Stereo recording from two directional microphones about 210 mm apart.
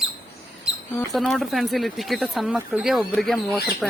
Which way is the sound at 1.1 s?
Centre (ahead or behind).